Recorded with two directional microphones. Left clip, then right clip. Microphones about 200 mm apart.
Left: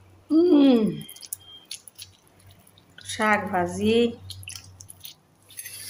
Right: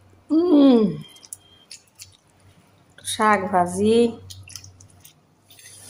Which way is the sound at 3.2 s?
20° right (ahead or behind).